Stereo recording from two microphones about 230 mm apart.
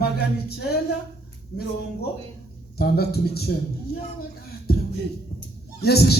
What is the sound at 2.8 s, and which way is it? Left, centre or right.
Speech, left.